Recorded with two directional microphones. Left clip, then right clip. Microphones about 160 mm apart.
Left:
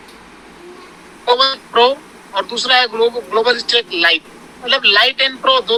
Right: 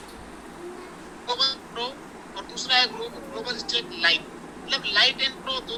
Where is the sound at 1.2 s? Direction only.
55° left (ahead or behind).